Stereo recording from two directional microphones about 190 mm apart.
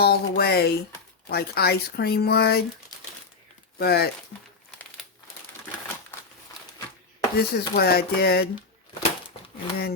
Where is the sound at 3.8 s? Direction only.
55° left (ahead or behind).